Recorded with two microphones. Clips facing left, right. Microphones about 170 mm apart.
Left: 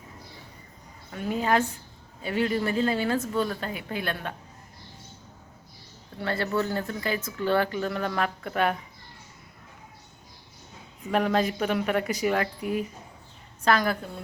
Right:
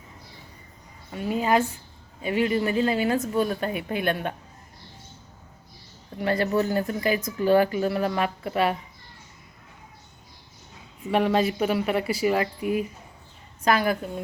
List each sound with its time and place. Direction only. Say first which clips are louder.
1.1 s speech: right 2 dB; 5° right (ahead or behind)
6.1 s speech: right 4 dB; 15° right (ahead or behind)
11.1 s speech: right 2 dB; 5° right (ahead or behind)